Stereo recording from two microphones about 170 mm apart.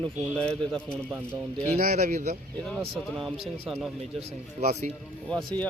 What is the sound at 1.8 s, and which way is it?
Speech, 50° right (ahead or behind).